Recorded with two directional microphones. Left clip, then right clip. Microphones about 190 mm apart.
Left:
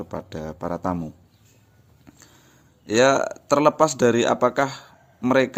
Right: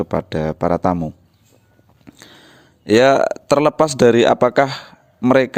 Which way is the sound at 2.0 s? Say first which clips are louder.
Right 9 dB; 40° right (ahead or behind).